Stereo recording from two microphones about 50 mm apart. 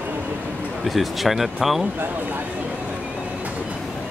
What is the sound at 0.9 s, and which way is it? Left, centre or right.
Speech, centre.